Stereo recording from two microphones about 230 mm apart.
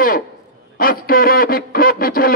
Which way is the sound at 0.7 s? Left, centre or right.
Left.